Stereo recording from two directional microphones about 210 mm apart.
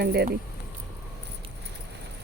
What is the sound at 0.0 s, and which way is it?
Speech, 50° right (ahead or behind).